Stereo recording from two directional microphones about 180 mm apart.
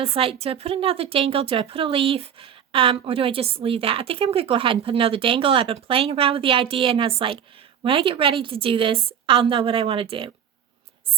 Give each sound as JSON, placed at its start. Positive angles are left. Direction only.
{"t": 0.0, "sound": "a woman's voice", "side_deg": -30}